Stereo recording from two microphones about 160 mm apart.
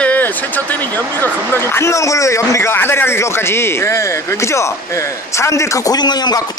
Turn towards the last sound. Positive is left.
turn(degrees=25)  # may be behind; listen again after turning